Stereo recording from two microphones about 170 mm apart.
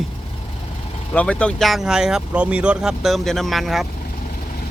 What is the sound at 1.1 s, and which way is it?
Speech, 5° left (ahead or behind).